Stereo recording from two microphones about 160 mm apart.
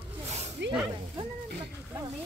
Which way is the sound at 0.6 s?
90° right.